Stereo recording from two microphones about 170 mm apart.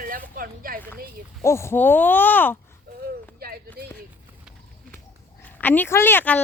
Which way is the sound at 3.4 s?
65° right (ahead or behind).